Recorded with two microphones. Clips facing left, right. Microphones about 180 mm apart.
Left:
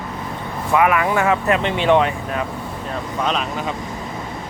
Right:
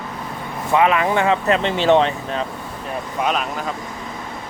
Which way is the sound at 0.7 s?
25° right (ahead or behind).